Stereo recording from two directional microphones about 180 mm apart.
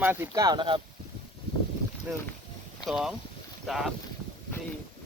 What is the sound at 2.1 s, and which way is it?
Speech, 10° right (ahead or behind).